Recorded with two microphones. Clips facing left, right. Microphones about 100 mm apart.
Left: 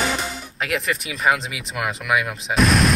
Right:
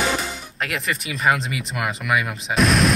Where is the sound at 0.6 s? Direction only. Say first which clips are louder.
Left 2 dB; centre (ahead or behind).